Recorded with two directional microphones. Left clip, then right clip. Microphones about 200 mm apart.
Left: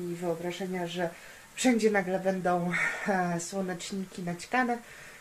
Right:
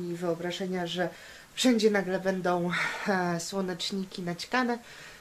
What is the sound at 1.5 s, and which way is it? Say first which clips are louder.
Speech: right 1 dB; 15° right (ahead or behind).